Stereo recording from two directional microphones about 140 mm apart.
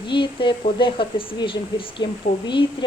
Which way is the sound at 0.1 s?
35° left (ahead or behind).